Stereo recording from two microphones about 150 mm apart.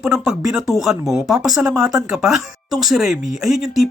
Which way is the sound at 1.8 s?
20° right (ahead or behind).